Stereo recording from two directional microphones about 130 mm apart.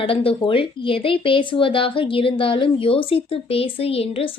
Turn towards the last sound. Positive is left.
turn(degrees=45)  # may be behind; listen again after turning